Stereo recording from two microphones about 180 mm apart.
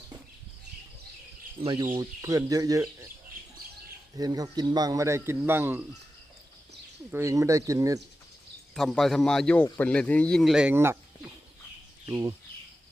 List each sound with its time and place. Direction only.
1.6 s speech: 20° right (ahead or behind)
4.2 s a man's voice: 20° right (ahead or behind)
7.1 s a man's voice: 15° right (ahead or behind)
8.7 s speech: centre (ahead or behind)
12.0 s speech: 15° right (ahead or behind)